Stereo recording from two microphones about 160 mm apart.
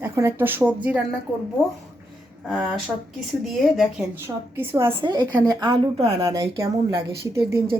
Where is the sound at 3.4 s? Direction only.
Centre (ahead or behind).